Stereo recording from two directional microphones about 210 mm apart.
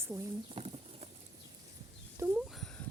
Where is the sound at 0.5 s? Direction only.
30° right (ahead or behind).